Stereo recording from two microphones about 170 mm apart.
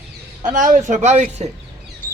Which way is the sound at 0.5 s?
45° right (ahead or behind).